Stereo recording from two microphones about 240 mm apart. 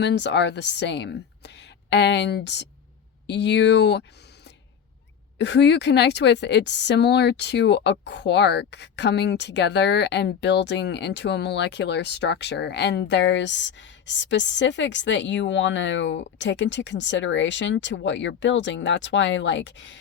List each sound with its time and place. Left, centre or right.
0.0 s a woman's voice: left
5.4 s a woman's voice: left